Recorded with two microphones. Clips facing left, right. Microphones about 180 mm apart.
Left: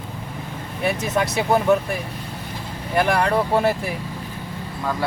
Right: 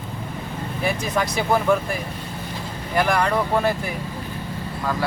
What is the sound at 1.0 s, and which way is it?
Speech, 25° left (ahead or behind).